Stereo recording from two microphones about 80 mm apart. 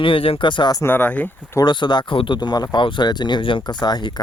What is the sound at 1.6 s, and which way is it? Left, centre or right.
Speech, left.